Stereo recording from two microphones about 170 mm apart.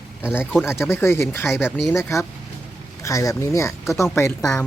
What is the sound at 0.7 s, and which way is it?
Speech, 15° left (ahead or behind).